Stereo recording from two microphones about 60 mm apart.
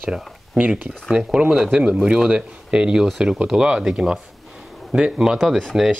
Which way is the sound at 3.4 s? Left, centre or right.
Centre.